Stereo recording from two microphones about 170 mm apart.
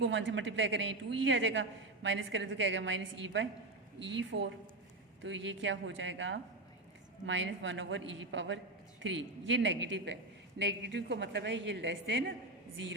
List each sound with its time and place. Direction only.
0.0 s a woman's voice: 90° right